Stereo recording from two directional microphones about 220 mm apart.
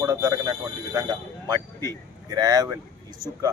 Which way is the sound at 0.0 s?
15° right (ahead or behind).